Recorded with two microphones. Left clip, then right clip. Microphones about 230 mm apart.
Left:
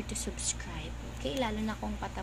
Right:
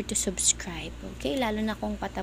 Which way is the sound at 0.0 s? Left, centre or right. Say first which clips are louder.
Right 9 dB; right.